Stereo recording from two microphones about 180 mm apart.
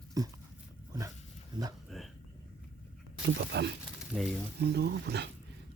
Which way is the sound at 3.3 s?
65° right (ahead or behind).